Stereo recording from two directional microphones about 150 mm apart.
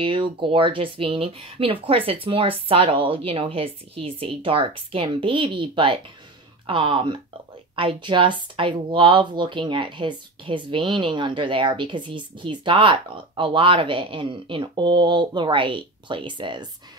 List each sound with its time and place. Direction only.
0.0 s speech: 35° right (ahead or behind)